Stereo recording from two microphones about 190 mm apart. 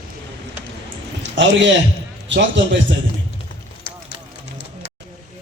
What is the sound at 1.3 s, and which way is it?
Speech, 70° right (ahead or behind).